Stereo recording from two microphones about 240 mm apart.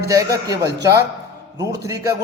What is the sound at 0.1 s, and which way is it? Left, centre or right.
A man's voice, centre.